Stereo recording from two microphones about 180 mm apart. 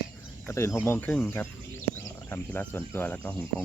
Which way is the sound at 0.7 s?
10° left (ahead or behind).